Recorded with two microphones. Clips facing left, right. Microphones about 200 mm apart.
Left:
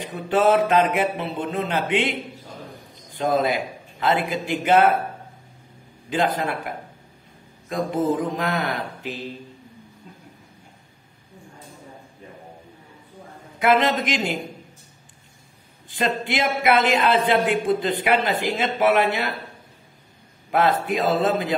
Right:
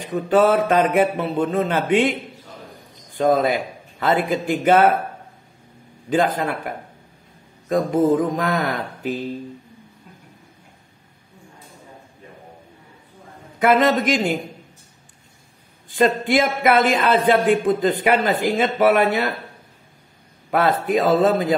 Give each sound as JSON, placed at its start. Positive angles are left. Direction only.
{"t": 0.3, "sound": "speech", "side_deg": -45}
{"t": 3.2, "sound": "speech", "side_deg": -45}
{"t": 6.0, "sound": "speech", "side_deg": -45}
{"t": 7.7, "sound": "speech", "side_deg": -45}
{"t": 13.6, "sound": "speech", "side_deg": -45}
{"t": 15.9, "sound": "speech", "side_deg": -45}
{"t": 20.8, "sound": "speech", "side_deg": -40}